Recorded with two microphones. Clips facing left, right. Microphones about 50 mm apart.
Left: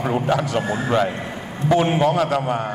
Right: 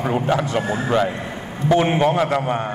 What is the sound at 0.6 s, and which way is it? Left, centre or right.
Speech, centre.